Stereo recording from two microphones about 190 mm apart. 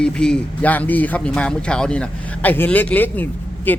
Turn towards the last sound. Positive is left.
turn(degrees=10)  # may be behind; listen again after turning